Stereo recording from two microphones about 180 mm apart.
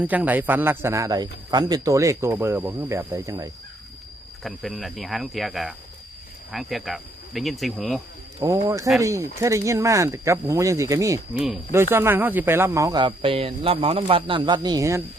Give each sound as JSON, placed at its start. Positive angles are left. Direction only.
{"t": 0.0, "sound": "speech", "side_deg": -10}
{"t": 4.4, "sound": "speech", "side_deg": 0}
{"t": 8.4, "sound": "speech", "side_deg": -15}
{"t": 11.3, "sound": "speech", "side_deg": -5}